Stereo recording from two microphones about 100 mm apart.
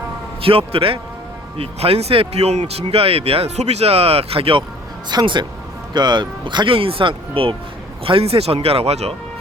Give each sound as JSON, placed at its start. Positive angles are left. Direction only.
{"t": 0.4, "sound": "a man's voice", "side_deg": -70}
{"t": 1.5, "sound": "speech", "side_deg": -85}
{"t": 5.0, "sound": "speech", "side_deg": -50}
{"t": 8.0, "sound": "speech", "side_deg": -75}